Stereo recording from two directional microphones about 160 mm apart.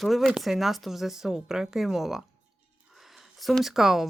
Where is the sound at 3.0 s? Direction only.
Centre (ahead or behind).